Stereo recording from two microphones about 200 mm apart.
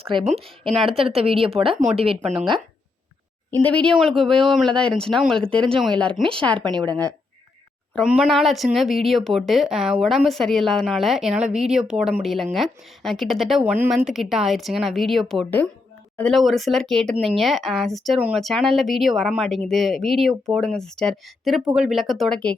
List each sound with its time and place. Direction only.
0.0 s a woman's voice: 25° right (ahead or behind)
2.2 s speech: centre (ahead or behind)
3.6 s speech: 5° left (ahead or behind)
6.7 s a woman's voice: 20° right (ahead or behind)
7.9 s speech: 5° right (ahead or behind)